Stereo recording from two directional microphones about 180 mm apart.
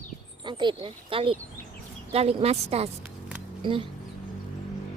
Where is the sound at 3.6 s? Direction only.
30° right (ahead or behind).